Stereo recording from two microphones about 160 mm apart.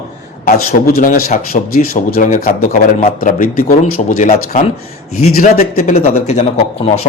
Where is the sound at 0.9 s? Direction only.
65° left (ahead or behind).